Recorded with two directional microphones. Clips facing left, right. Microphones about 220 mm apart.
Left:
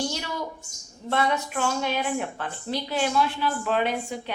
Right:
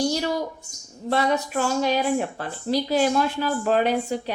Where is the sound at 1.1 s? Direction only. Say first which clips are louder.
Right 3 dB; 40° right (ahead or behind).